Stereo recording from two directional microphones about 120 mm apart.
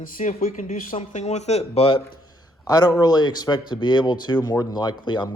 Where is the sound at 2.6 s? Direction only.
30° left (ahead or behind).